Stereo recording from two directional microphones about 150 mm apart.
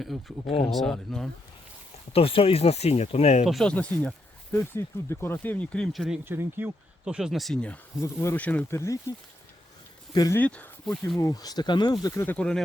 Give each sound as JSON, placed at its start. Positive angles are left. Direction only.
{"t": 0.0, "sound": "speech", "side_deg": 0}
{"t": 2.1, "sound": "speech", "side_deg": 40}
{"t": 3.4, "sound": "speech", "side_deg": 0}
{"t": 6.2, "sound": "speech", "side_deg": -15}
{"t": 7.0, "sound": "speech", "side_deg": -5}
{"t": 7.9, "sound": "speech", "side_deg": 20}
{"t": 10.3, "sound": "speech", "side_deg": 10}
{"t": 11.2, "sound": "speech", "side_deg": 25}
{"t": 12.2, "sound": "speech", "side_deg": 10}